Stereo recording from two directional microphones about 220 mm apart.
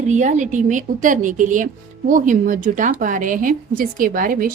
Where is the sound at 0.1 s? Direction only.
35° right (ahead or behind).